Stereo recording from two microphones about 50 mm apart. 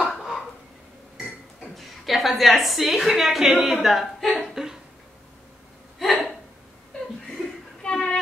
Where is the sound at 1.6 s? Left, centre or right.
Centre.